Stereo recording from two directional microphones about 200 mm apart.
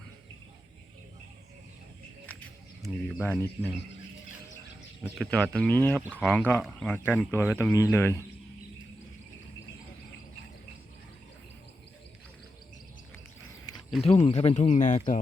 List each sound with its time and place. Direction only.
3.2 s speech: 10° left (ahead or behind)
5.1 s speech: 5° left (ahead or behind)
14.0 s speech: 30° left (ahead or behind)